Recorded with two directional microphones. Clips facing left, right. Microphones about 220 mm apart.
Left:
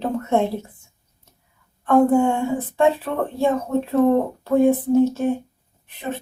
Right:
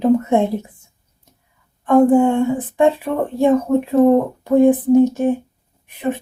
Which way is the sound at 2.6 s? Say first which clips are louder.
Right 3 dB; 15° right (ahead or behind).